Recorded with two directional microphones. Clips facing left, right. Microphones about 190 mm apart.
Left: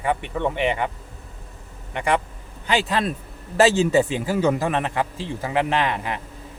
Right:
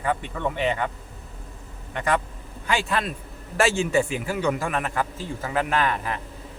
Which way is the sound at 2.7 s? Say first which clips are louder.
Left 3 dB; 20° left (ahead or behind).